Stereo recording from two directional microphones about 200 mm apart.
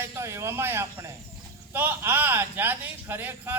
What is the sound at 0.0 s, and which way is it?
A man's voice, 15° right (ahead or behind).